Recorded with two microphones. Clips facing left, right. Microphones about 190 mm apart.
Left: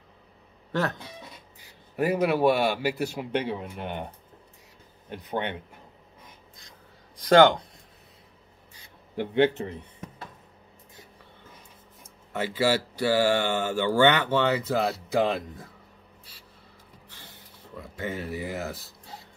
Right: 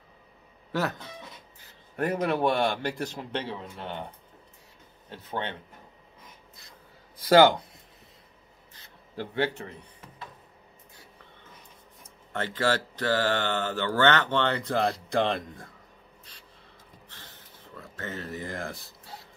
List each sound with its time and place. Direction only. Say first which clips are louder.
0.7 s speech: left 1 dB; centre (ahead or behind)
2.0 s speech: left 3 dB; 5° left (ahead or behind)
5.1 s speech: left 3 dB; 15° left (ahead or behind)
7.2 s speech: left 1 dB; 5° right (ahead or behind)
8.7 s a sound: left 5 dB; 15° left (ahead or behind)
12.3 s speech: left 2 dB; 10° left (ahead or behind)
16.3 s a sound: even; 5° left (ahead or behind)
17.7 s speech: left 4 dB; 10° left (ahead or behind)